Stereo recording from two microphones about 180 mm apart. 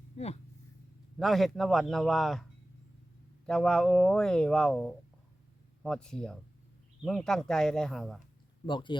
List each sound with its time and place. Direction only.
0.2 s speech: 35° left (ahead or behind)
1.2 s speech: centre (ahead or behind)
8.6 s speech: 25° left (ahead or behind)